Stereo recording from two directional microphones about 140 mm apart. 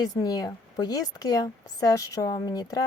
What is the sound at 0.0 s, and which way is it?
A woman's voice, 30° left (ahead or behind).